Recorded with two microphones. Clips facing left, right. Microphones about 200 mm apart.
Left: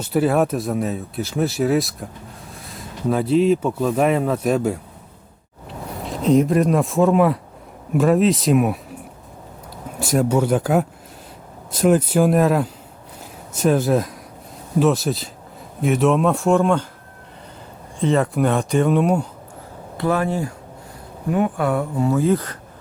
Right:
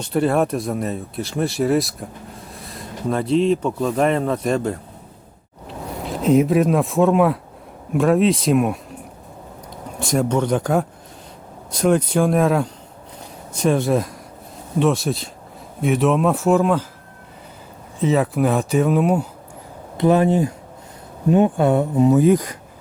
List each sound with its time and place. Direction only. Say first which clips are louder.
0.0 s speech: left 1 dB; 5° left (ahead or behind)
10.0 s speech: left 1 dB; 5° left (ahead or behind)
18.0 s speech: even; 5° right (ahead or behind)
20.0 s speech: right 5 dB; 20° right (ahead or behind)